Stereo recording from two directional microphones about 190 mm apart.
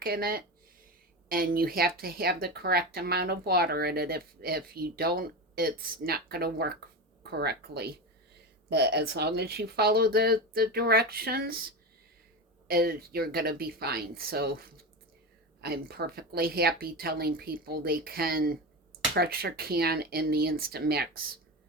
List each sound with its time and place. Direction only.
0.0 s speech: 50° right (ahead or behind)
12.6 s speech: 50° right (ahead or behind)